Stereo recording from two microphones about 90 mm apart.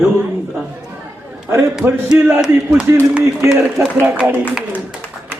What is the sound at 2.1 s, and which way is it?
Speech, 25° right (ahead or behind).